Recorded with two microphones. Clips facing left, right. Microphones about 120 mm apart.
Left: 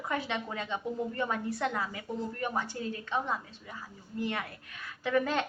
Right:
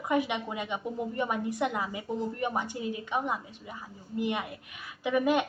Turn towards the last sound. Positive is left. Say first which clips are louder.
# right 3 dB
turn(degrees=-15)  # may be behind; listen again after turning